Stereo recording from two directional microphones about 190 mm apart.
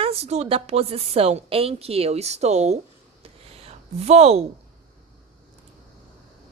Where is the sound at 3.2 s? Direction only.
30° right (ahead or behind).